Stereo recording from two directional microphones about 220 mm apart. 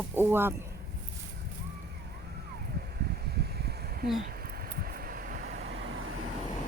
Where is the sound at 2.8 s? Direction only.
45° right (ahead or behind).